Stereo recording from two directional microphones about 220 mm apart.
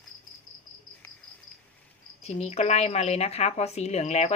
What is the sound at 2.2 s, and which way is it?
A woman's voice, 30° left (ahead or behind).